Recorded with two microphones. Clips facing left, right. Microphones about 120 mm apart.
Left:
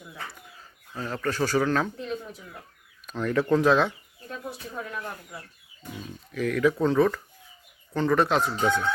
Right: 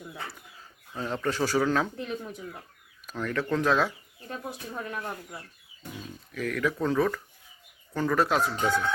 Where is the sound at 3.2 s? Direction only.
10° left (ahead or behind).